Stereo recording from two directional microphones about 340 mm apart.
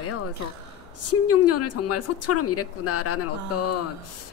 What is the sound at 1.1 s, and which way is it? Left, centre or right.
Speech, left.